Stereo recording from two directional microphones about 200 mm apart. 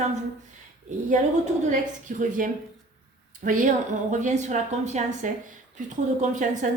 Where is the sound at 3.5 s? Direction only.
40° right (ahead or behind).